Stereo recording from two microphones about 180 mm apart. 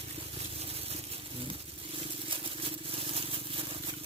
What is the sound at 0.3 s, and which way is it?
Vehicle, 35° right (ahead or behind).